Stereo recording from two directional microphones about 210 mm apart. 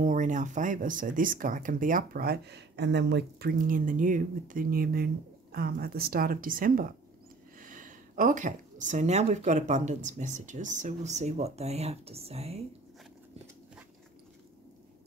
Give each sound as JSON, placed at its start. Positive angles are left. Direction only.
{"t": 0.0, "sound": "speech", "side_deg": -35}